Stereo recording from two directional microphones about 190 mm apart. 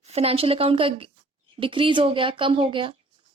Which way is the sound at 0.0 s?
35° right (ahead or behind).